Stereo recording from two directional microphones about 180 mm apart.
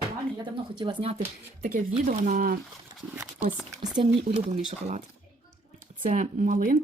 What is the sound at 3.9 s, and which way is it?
Speech, 30° right (ahead or behind).